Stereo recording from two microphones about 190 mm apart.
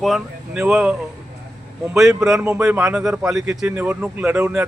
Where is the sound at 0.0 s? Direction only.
5° right (ahead or behind).